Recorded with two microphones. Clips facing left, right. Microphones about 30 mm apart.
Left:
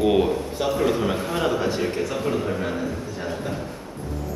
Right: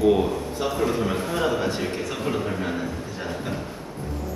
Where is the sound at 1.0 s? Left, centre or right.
Centre.